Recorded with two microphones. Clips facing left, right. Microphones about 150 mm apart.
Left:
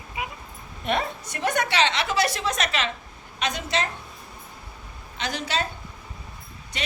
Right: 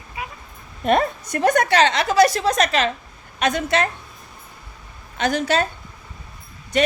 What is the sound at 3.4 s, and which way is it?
Speech, 50° right (ahead or behind).